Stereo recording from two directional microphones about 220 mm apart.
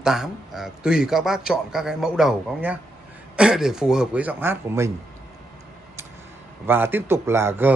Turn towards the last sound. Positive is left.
turn(degrees=-10)  # may be behind; listen again after turning